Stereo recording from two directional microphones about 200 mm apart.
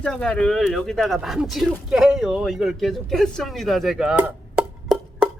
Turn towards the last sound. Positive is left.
turn(degrees=-5)  # may be behind; listen again after turning